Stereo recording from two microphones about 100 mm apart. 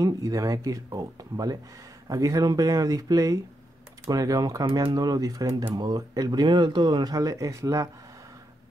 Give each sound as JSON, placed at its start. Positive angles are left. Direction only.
{"t": 0.0, "sound": "speech", "side_deg": -35}